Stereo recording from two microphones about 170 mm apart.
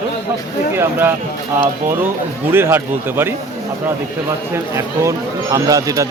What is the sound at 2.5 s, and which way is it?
Speech, 15° right (ahead or behind).